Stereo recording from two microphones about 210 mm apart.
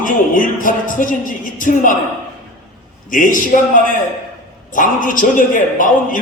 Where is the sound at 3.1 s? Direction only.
40° left (ahead or behind).